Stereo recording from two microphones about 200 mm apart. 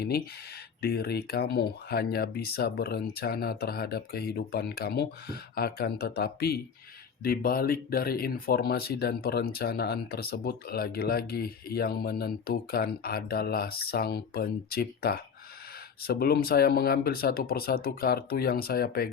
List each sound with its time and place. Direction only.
0.8 s speech: 50° left (ahead or behind)